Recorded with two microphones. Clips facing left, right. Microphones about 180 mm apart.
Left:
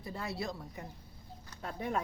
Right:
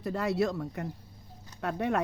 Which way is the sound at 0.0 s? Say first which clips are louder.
Right 10 dB; 75° right (ahead or behind).